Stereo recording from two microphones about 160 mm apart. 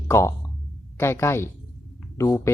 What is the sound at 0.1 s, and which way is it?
Speech, 15° left (ahead or behind).